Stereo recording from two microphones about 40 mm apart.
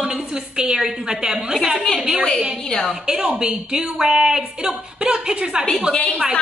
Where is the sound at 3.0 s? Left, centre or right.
Centre.